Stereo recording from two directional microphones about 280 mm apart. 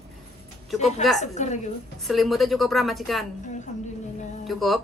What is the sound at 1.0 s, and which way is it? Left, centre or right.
Speech, centre.